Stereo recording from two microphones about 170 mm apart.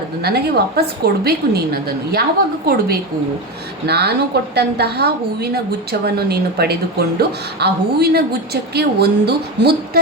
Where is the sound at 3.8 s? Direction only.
75° right (ahead or behind).